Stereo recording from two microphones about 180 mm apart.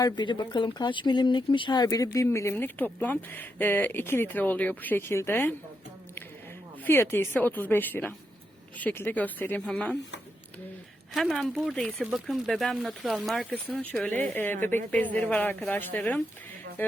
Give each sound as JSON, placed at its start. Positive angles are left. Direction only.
{"t": 0.0, "sound": "speech", "side_deg": 25}
{"t": 6.8, "sound": "speech", "side_deg": 10}
{"t": 11.1, "sound": "speech", "side_deg": 0}